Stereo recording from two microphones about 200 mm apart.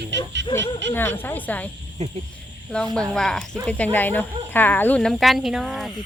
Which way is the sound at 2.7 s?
5° left (ahead or behind).